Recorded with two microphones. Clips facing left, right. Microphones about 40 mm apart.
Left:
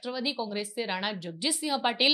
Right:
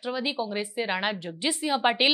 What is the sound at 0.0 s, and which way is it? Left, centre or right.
A woman's voice, centre.